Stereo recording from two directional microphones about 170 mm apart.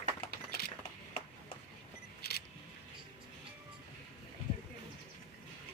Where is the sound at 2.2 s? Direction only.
70° left (ahead or behind).